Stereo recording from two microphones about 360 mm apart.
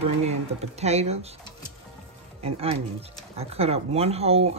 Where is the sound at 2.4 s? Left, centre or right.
Centre.